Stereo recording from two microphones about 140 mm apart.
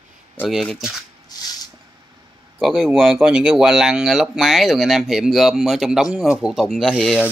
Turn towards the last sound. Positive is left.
turn(degrees=5)  # may be behind; listen again after turning